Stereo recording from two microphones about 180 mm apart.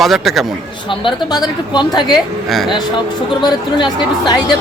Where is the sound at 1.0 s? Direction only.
25° left (ahead or behind).